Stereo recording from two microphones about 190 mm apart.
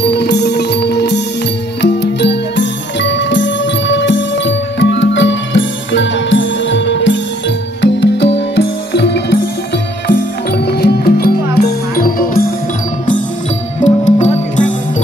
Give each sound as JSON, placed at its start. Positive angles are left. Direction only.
{"t": 0.0, "sound": "music", "side_deg": 60}
{"t": 10.7, "sound": "music", "side_deg": 55}
{"t": 13.8, "sound": "music", "side_deg": 40}